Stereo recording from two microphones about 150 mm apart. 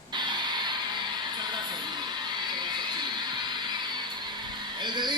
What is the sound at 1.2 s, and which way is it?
Music, 30° right (ahead or behind).